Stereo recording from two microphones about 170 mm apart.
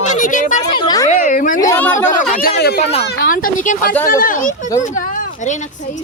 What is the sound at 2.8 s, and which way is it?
Speech, 35° left (ahead or behind).